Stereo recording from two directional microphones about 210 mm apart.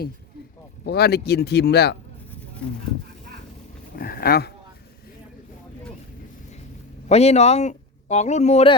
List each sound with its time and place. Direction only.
0.9 s speech: 50° left (ahead or behind)
3.9 s dog: 45° left (ahead or behind)
7.1 s speech: 30° left (ahead or behind)